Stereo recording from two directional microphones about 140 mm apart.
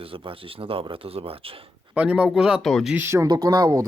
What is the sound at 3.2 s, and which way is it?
Speech, 25° right (ahead or behind).